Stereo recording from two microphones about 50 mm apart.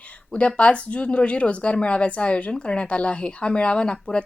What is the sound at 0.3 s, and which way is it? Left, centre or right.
Speech, left.